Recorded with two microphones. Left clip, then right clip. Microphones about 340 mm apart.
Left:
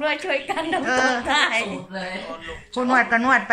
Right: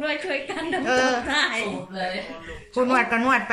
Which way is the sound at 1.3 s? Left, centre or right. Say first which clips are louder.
Left 3 dB; centre.